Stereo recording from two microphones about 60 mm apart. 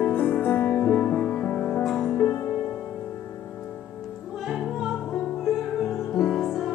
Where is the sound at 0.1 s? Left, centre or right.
Left.